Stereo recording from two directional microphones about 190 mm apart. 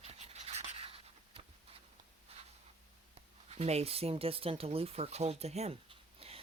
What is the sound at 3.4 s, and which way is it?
Speech, 35° right (ahead or behind).